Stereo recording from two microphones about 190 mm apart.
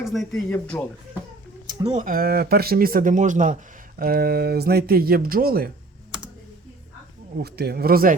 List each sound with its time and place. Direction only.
0.0 s speech: centre (ahead or behind)
1.6 s speech: 35° right (ahead or behind); by 5.7 s 50° right (ahead or behind)
7.3 s speech: 55° right (ahead or behind)